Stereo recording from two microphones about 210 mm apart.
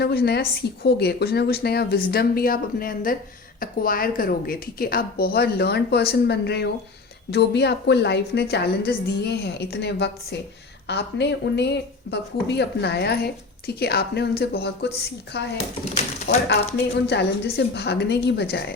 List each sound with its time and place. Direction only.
0.0 s a woman's voice: 50° left (ahead or behind)
17.1 s a woman's voice: 50° left (ahead or behind)